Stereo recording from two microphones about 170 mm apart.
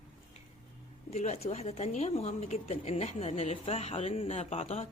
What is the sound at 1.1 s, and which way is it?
Speech, 40° left (ahead or behind).